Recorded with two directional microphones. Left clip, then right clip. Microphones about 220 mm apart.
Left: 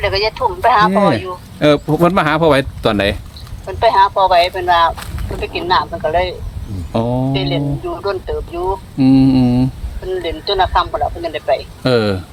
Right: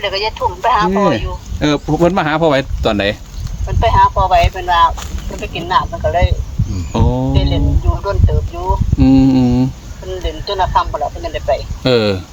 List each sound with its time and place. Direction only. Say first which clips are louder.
0.0 s speech: left 1 dB; 45° left (ahead or behind)
0.9 s speech: left 1 dB; 35° left (ahead or behind)
1.1 s speech: even; 50° left (ahead or behind)
1.5 s speech: left 2 dB; 30° left (ahead or behind)
3.7 s speech: even; 45° left (ahead or behind)
6.9 s speech: even; 10° left (ahead or behind)
7.3 s speech: left 1 dB; 40° left (ahead or behind)
9.0 s mantra: right 1 dB; 5° left (ahead or behind)
10.1 s speech: left 3 dB; 35° left (ahead or behind)
11.8 s speech: right 1 dB; 5° left (ahead or behind)